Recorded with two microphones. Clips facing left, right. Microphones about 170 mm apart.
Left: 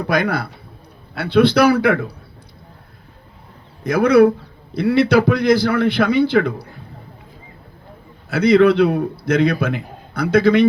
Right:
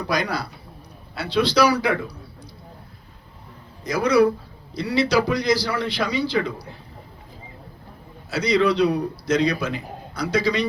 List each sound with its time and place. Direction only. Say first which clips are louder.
0.0 s a man's voice: left 5 dB; 55° left (ahead or behind)
3.8 s a man's voice: left 6 dB; 55° left (ahead or behind)
8.3 s a man's voice: left 7 dB; 55° left (ahead or behind)